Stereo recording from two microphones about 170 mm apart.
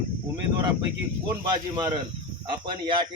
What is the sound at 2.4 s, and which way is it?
Speech, 30° right (ahead or behind).